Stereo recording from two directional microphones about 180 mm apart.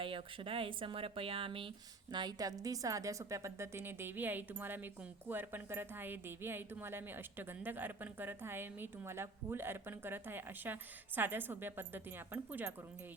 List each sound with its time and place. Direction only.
0.0 s a woman's voice: 30° right (ahead or behind); by 12.7 s 10° right (ahead or behind)